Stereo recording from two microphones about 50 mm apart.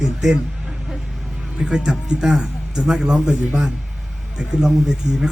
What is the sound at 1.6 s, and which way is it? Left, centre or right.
Speech, centre.